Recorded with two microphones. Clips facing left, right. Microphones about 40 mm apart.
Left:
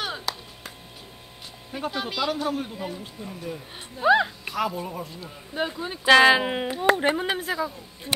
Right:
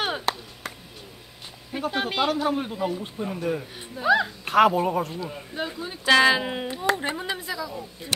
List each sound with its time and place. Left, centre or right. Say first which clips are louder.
0.0 s chop: right 4 dB; right
1.9 s speech: right 3 dB; right
2.4 s a man's voice: right 3 dB; centre
3.2 s speech: right 7 dB; right
4.0 s speech: left 2 dB; centre
4.5 s speech: right 9 dB; right
5.5 s speech: left 6 dB; centre
6.8 s speech: left 5 dB; left